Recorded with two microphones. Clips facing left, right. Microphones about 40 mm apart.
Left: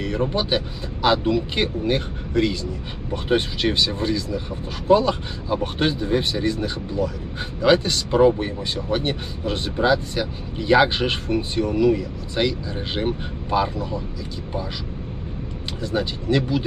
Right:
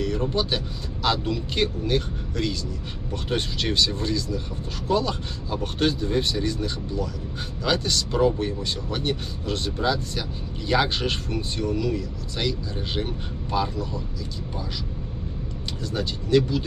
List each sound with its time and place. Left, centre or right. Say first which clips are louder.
0.0 s speech: left 2 dB; left
15.8 s speech: left 5 dB; centre